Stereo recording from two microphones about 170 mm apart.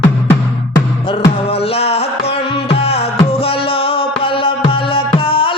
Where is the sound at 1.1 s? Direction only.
35° left (ahead or behind).